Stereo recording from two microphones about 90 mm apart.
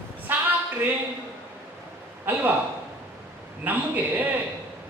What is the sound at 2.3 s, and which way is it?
Speech, 20° right (ahead or behind).